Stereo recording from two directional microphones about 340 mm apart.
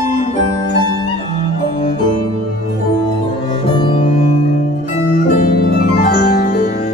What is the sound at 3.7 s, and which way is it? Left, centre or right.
Music, centre.